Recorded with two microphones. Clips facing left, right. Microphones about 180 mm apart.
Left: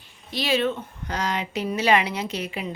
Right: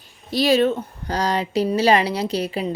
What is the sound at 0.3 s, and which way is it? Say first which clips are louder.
Speech: right 6 dB; 40° right (ahead or behind).